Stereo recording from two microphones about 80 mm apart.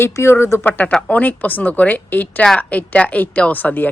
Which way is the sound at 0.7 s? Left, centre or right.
Centre.